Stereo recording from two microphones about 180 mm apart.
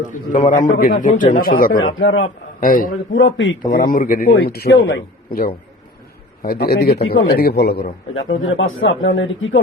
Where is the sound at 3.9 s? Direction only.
50° left (ahead or behind); by 8.2 s 75° left (ahead or behind).